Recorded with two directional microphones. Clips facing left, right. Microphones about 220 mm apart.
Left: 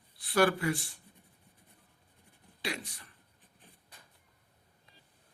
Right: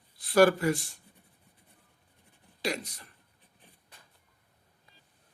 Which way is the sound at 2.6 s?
40° right (ahead or behind).